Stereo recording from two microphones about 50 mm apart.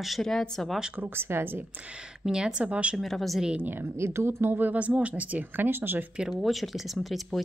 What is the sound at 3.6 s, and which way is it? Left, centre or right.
Speech, right.